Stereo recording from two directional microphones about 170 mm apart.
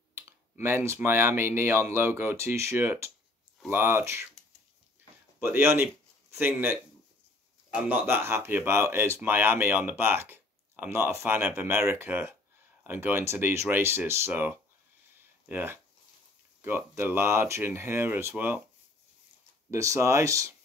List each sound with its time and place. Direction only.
0.1 s speech: 15° right (ahead or behind)
5.4 s speech: 15° right (ahead or behind)
19.7 s speech: 15° right (ahead or behind)